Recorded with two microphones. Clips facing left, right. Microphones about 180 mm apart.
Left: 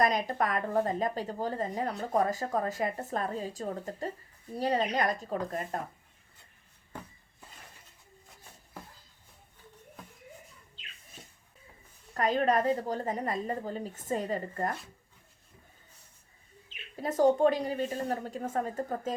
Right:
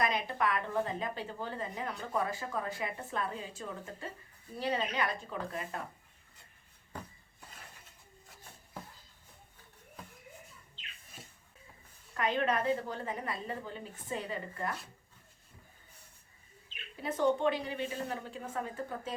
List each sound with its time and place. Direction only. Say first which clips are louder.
0.0 s a woman's voice: left 4 dB; 40° left (ahead or behind)
12.1 s a woman's voice: left 5 dB; 40° left (ahead or behind)
17.0 s speech: left 6 dB; 40° left (ahead or behind)